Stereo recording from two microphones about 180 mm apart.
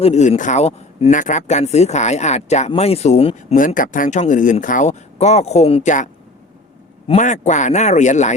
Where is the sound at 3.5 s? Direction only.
50° left (ahead or behind).